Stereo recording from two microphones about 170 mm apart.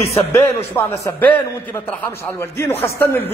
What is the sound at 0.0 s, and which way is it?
A man's voice, 15° left (ahead or behind).